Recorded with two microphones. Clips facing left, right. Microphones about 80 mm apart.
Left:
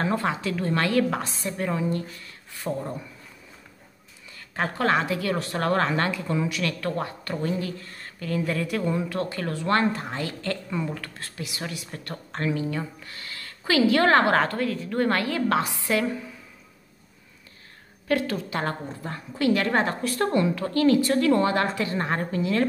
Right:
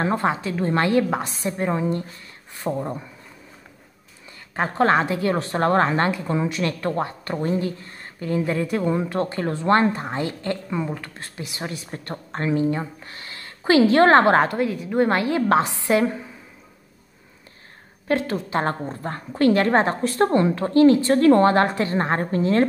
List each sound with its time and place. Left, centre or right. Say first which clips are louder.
0.0 s a woman's voice: right 3 dB; right
4.6 s a woman's voice: right 5 dB; right
18.0 s a woman's voice: right 2 dB; right